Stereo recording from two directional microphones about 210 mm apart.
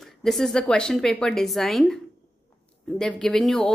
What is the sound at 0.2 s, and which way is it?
A woman's voice, centre (ahead or behind).